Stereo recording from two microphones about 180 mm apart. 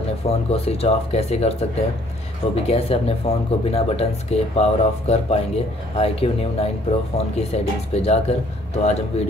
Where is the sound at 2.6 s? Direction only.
35° left (ahead or behind).